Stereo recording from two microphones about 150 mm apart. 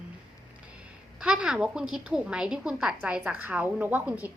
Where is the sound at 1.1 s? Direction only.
5° right (ahead or behind).